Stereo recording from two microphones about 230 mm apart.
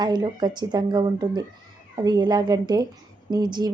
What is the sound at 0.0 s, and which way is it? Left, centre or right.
A woman's voice, centre.